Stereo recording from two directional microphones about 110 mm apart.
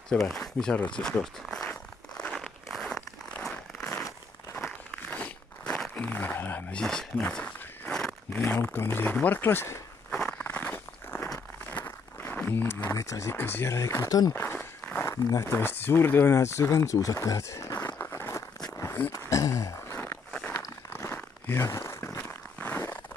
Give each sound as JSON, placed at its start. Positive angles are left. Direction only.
{"t": 0.3, "sound": "speech", "side_deg": 5}
{"t": 1.5, "sound": "crumpling", "side_deg": 10}
{"t": 4.6, "sound": "a sound", "side_deg": 10}
{"t": 6.7, "sound": "walk", "side_deg": 5}
{"t": 8.5, "sound": "speech", "side_deg": 20}
{"t": 10.1, "sound": "walk", "side_deg": 10}
{"t": 11.7, "sound": "speech", "side_deg": 20}
{"t": 14.3, "sound": "speech", "side_deg": 20}
{"t": 17.9, "sound": "a sound", "side_deg": 20}
{"t": 20.3, "sound": "a sound", "side_deg": 10}